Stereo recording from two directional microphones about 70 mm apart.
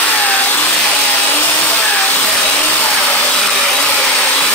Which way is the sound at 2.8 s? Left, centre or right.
Centre.